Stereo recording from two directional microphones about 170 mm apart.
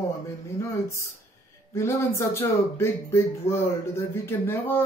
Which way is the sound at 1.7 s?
15° left (ahead or behind).